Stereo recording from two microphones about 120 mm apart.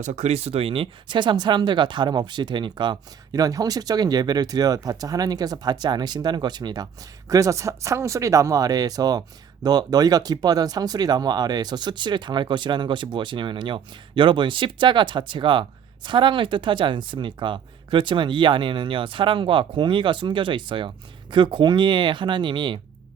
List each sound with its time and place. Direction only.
0.0 s speech: 75° right (ahead or behind); by 22.8 s 40° right (ahead or behind)